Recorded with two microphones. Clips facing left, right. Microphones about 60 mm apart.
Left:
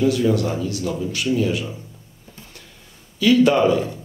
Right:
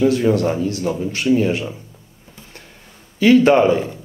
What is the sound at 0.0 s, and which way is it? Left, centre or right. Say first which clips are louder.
Speech: right 3 dB; right.